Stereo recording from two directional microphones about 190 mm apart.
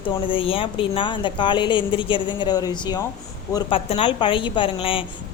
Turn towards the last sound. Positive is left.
turn(degrees=30)  # may be behind; listen again after turning